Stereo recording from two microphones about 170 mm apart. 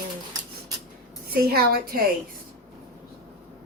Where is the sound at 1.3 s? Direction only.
65° right (ahead or behind).